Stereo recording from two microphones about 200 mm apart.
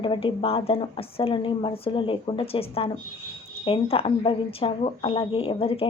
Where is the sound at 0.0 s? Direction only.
25° left (ahead or behind).